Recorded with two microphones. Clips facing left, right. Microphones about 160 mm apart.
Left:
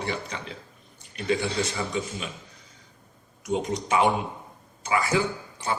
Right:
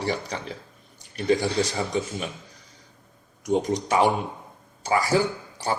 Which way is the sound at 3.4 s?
35° right (ahead or behind).